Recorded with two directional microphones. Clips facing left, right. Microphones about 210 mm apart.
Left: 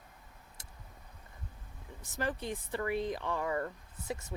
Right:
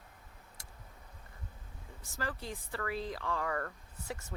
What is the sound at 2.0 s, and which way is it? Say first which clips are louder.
Speech: left 4 dB; 20° left (ahead or behind).